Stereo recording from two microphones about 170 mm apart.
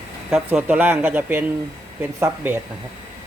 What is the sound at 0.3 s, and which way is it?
Speech, 5° right (ahead or behind).